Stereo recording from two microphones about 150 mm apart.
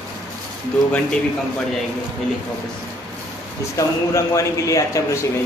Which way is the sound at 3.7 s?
20° left (ahead or behind).